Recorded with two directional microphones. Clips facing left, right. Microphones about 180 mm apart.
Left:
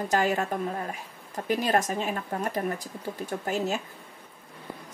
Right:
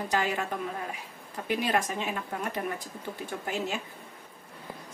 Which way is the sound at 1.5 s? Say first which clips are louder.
Left 3 dB; 40° left (ahead or behind).